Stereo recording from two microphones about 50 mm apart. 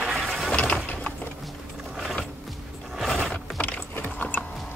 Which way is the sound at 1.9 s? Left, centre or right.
Centre.